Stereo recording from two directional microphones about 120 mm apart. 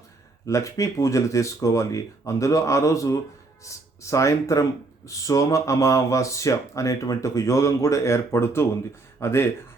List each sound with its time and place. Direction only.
0.4 s speech: 25° left (ahead or behind)